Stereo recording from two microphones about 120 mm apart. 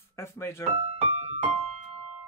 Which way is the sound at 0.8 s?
60° right (ahead or behind).